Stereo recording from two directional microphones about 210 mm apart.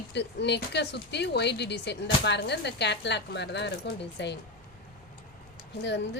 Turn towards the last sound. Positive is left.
turn(degrees=55)  # may be behind; listen again after turning